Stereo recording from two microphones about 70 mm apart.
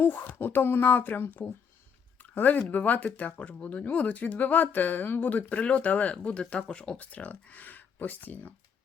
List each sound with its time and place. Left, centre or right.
0.0 s speech: left